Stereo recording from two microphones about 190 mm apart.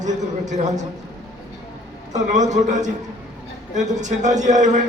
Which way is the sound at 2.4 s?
40° right (ahead or behind).